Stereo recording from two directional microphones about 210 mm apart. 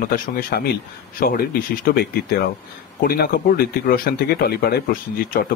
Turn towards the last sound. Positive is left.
turn(degrees=45)  # may be behind; listen again after turning